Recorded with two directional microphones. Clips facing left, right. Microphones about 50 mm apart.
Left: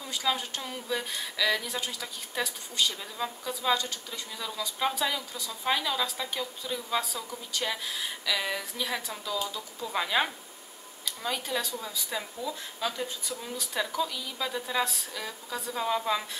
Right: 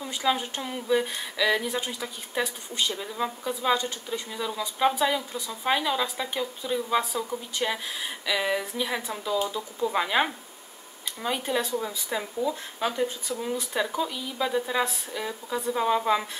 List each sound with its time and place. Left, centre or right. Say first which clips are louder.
0.0 s speech: right 4 dB; right